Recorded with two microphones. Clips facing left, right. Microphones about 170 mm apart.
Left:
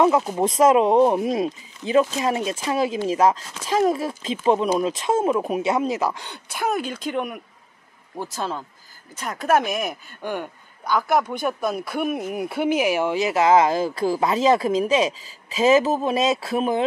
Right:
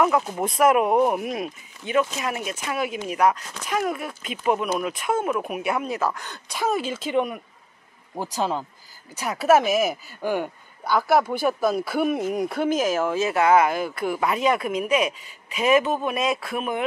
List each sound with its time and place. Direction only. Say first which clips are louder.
0.6 s speech: left 3 dB; 25° left (ahead or behind)
6.5 s speech: even; centre (ahead or behind)
8.2 s speech: right 3 dB; 15° right (ahead or behind); by 16.8 s 30° left (ahead or behind)